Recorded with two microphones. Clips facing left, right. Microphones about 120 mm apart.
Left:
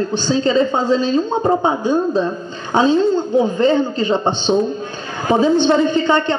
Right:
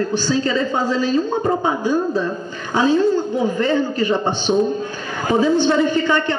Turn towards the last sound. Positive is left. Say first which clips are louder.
# left 2 dB
turn(degrees=25)  # may be behind; listen again after turning